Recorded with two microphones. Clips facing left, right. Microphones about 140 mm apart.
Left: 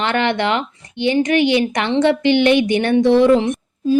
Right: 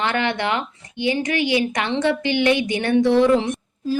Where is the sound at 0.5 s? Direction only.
25° left (ahead or behind).